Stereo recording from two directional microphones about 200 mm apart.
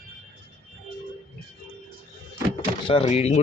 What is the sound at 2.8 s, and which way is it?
Speech, 30° left (ahead or behind).